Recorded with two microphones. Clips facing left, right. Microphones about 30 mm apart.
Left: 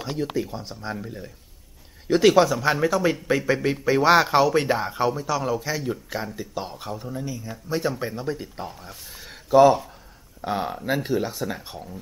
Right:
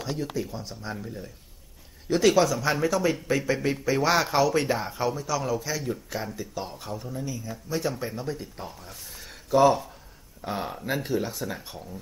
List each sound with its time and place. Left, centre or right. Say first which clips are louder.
0.0 s speech: left 4 dB; centre
3.5 s speech: left 3 dB; centre
4.0 s speech: left 6 dB; left